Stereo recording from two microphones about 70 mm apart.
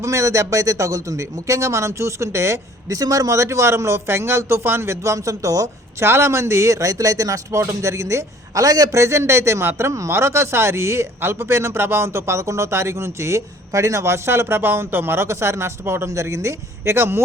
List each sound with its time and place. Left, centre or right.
0.0 s a man's voice: right
2.9 s a man's voice: right
6.0 s speech: right